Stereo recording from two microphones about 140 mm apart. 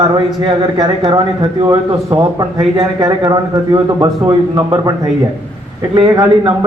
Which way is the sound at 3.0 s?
25° right (ahead or behind).